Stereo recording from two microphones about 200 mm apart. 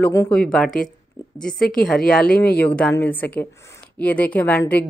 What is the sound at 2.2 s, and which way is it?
Speech, 50° left (ahead or behind).